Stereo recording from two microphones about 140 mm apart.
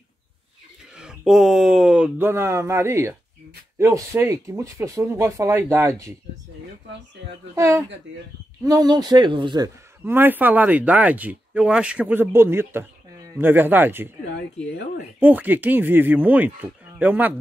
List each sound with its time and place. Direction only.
0.9 s speech: 5° right (ahead or behind); by 6.1 s 20° right (ahead or behind)
7.5 s speech: 20° right (ahead or behind)
10.0 s speech: 15° right (ahead or behind)
15.1 s speech: 10° right (ahead or behind)